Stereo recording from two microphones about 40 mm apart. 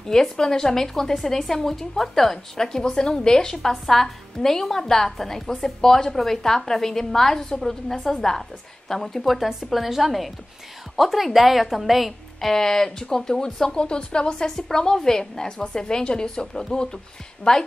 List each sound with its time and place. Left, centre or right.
0.0 s a woman's voice: centre
12.4 s a woman's voice: centre